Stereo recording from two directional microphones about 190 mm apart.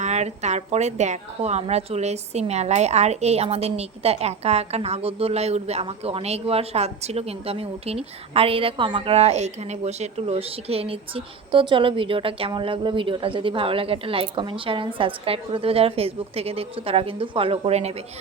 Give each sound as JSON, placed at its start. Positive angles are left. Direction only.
{"t": 0.0, "sound": "a woman's voice", "side_deg": -35}